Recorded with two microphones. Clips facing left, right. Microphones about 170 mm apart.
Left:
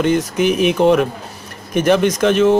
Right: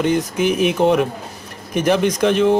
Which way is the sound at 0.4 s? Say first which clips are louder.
Left 2 dB; 65° left (ahead or behind).